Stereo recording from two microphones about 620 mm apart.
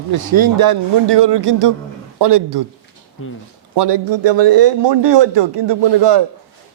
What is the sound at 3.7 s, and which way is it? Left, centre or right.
A man's voice, right.